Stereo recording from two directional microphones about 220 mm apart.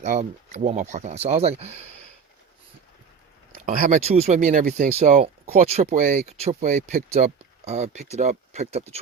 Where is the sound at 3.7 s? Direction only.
35° right (ahead or behind).